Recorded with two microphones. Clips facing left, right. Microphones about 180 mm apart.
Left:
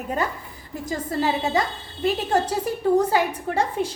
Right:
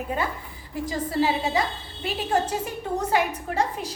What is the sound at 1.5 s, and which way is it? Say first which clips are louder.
Speech: left 2 dB; 40° left (ahead or behind).